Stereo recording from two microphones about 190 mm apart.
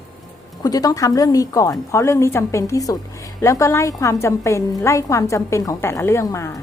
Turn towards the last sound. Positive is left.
turn(degrees=15)  # may be behind; listen again after turning